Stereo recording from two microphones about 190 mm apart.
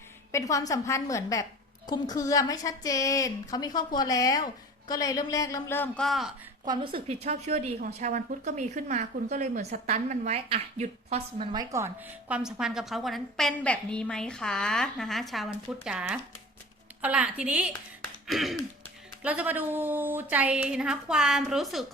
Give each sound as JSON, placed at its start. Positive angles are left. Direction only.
{"t": 0.3, "sound": "a man's voice", "side_deg": 15}
{"t": 6.7, "sound": "speech", "side_deg": -25}
{"t": 11.5, "sound": "a woman's voice", "side_deg": -15}